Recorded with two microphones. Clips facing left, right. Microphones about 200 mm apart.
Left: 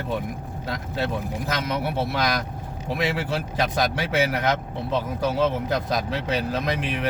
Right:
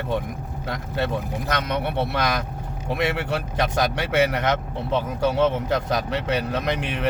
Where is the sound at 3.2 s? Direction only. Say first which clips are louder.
Right 1 dB; 65° right (ahead or behind).